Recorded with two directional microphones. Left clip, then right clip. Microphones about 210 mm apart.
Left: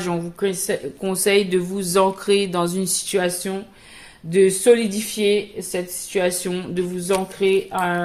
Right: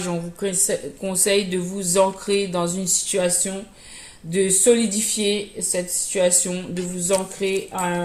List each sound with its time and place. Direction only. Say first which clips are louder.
0.0 s speech: left 3 dB; 35° left (ahead or behind)